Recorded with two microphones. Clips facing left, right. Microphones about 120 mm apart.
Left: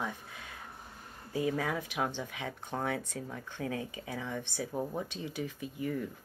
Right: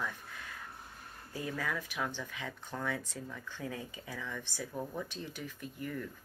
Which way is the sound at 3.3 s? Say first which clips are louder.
Left 5 dB; 60° left (ahead or behind).